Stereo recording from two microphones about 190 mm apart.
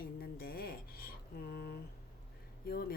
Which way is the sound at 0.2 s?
55° left (ahead or behind).